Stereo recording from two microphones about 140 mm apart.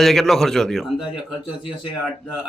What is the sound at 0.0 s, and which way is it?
A man's voice, centre (ahead or behind).